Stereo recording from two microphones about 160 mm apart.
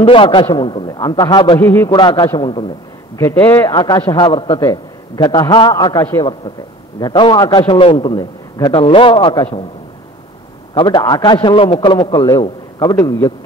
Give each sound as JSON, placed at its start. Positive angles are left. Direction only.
{"t": 0.0, "sound": "a man's voice", "side_deg": 35}
{"t": 1.6, "sound": "a man's voice", "side_deg": 15}
{"t": 1.9, "sound": "a man's voice", "side_deg": 25}
{"t": 3.2, "sound": "a man's voice", "side_deg": 15}
{"t": 3.6, "sound": "a man's voice", "side_deg": 25}
{"t": 10.7, "sound": "a man's voice", "side_deg": 30}